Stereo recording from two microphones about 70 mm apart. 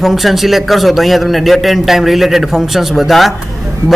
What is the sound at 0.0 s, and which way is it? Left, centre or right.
A man's voice, centre.